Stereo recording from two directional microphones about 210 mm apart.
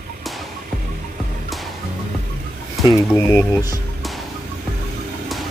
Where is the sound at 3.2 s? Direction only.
15° left (ahead or behind).